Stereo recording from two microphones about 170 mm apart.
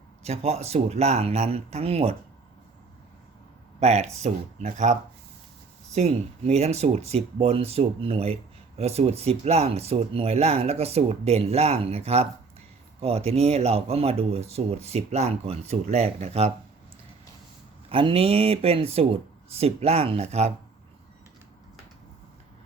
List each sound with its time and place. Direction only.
0.2 s speech: 40° right (ahead or behind)
3.8 s speech: 40° right (ahead or behind)
17.8 s speech: 35° right (ahead or behind)